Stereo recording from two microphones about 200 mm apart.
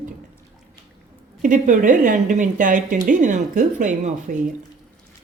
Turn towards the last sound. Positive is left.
turn(degrees=-40)  # may be behind; listen again after turning